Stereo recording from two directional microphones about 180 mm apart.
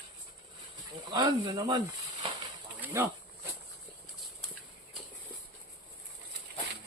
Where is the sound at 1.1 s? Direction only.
20° right (ahead or behind).